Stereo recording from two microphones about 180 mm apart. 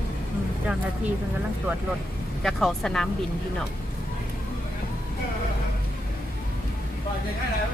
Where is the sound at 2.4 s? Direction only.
Centre (ahead or behind).